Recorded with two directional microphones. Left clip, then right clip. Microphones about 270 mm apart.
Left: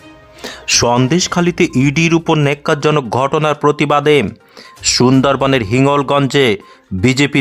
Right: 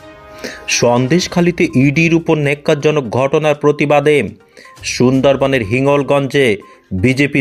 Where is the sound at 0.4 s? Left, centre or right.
Centre.